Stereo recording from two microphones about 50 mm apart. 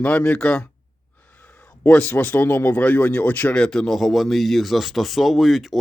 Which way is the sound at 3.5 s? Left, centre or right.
Centre.